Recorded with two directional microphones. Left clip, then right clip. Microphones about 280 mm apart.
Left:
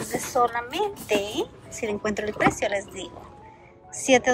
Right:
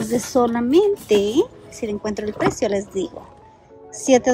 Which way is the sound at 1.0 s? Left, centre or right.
Right.